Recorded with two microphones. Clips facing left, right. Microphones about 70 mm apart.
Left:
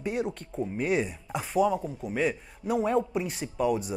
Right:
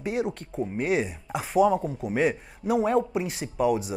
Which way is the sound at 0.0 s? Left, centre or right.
Centre.